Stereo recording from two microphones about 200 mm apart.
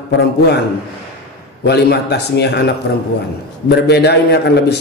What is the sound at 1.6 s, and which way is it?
A man's voice, 55° left (ahead or behind).